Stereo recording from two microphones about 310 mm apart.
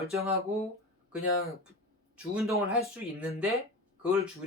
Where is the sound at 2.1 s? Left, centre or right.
Centre.